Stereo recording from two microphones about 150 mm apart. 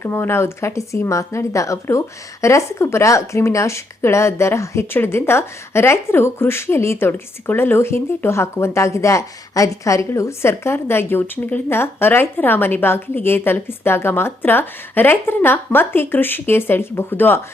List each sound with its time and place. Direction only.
0.0 s speech: 15° left (ahead or behind)